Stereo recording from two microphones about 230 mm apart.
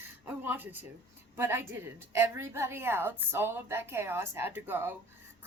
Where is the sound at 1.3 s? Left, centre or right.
Centre.